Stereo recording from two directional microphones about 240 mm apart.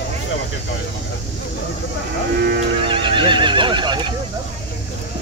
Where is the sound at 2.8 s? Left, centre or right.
Right.